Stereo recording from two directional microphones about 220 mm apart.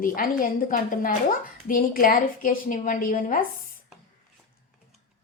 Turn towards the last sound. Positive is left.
turn(degrees=40)  # may be behind; listen again after turning